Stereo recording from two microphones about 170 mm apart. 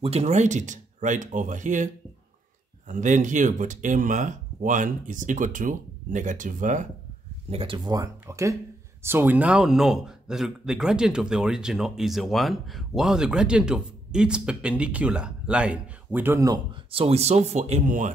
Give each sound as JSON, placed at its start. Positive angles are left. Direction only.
{"t": 0.0, "sound": "speech", "side_deg": -40}
{"t": 2.9, "sound": "speech", "side_deg": -45}
{"t": 7.4, "sound": "a man's voice", "side_deg": -35}
{"t": 16.9, "sound": "speech", "side_deg": -35}